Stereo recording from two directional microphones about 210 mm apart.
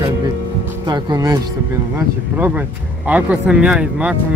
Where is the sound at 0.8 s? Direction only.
20° right (ahead or behind).